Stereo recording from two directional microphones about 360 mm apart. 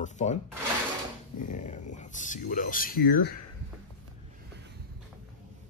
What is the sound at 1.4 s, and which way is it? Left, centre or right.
Speech, left.